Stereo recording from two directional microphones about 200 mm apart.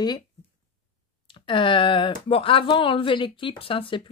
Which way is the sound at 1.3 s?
25° left (ahead or behind).